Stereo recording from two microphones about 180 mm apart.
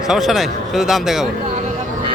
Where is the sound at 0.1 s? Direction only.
Centre (ahead or behind).